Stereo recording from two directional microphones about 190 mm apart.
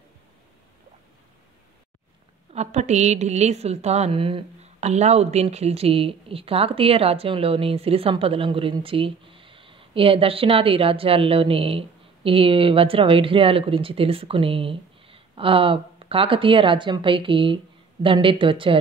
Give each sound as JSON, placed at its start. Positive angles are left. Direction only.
{"t": 2.5, "sound": "a woman's voice", "side_deg": -35}